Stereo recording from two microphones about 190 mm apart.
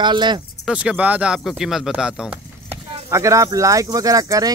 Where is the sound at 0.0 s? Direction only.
25° right (ahead or behind).